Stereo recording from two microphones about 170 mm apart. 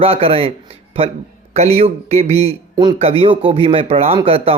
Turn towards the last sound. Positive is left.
turn(degrees=-35)  # may be behind; listen again after turning